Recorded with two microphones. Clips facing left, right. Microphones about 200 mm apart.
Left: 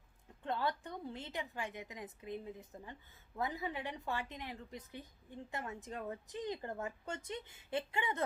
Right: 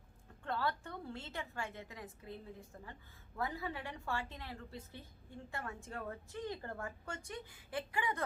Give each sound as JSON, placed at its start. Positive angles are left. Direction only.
{"t": 0.4, "sound": "a woman's voice", "side_deg": 20}